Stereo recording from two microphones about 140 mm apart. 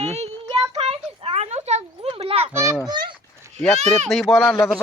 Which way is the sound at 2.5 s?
20° right (ahead or behind).